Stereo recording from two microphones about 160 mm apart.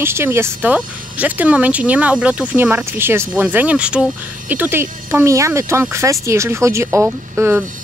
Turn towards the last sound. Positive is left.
turn(degrees=-15)  # may be behind; listen again after turning